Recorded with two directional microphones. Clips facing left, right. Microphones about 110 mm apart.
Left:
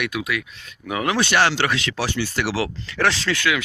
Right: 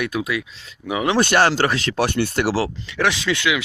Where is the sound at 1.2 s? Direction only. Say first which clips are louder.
Right 3 dB; 45° right (ahead or behind).